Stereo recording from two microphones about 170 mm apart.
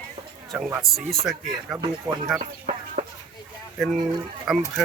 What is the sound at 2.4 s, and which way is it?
Music, 40° right (ahead or behind).